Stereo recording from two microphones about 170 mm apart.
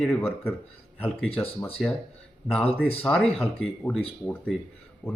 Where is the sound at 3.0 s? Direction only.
5° left (ahead or behind).